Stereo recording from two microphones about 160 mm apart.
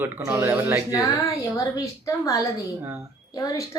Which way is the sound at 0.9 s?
20° left (ahead or behind).